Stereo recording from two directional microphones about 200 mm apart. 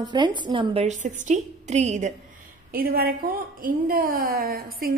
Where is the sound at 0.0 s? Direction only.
20° right (ahead or behind).